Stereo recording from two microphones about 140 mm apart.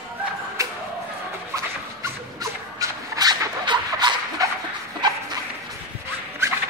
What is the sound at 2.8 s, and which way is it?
Dog, 30° right (ahead or behind).